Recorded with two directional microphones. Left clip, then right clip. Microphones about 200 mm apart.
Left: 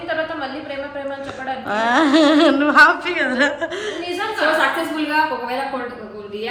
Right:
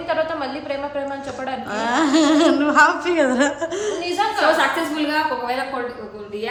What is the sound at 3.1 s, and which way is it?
Speech, 20° right (ahead or behind).